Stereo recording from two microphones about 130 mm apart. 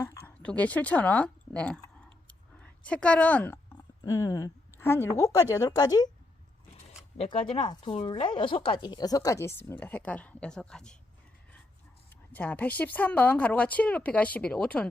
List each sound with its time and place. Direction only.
0.0 s speech: 20° left (ahead or behind)
2.2 s clicking: 10° left (ahead or behind)
3.8 s a sound: 25° left (ahead or behind)
5.1 s speech: 25° left (ahead or behind)
7.3 s speech: 40° left (ahead or behind); by 10.9 s 5° left (ahead or behind)
12.3 s speech: 15° left (ahead or behind)